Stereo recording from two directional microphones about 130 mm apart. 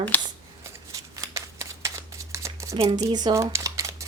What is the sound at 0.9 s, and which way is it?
Shuffling cards, 25° right (ahead or behind).